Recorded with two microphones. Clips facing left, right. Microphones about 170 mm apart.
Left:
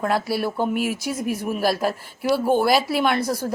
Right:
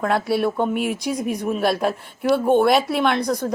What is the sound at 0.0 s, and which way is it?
Speech, centre (ahead or behind).